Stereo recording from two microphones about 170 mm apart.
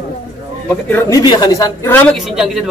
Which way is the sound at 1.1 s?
20° left (ahead or behind).